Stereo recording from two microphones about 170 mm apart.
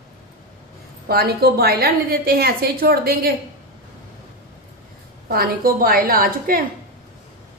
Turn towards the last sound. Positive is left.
turn(degrees=-60)  # may be behind; listen again after turning